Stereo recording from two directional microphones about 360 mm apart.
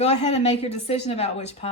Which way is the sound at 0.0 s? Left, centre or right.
Centre.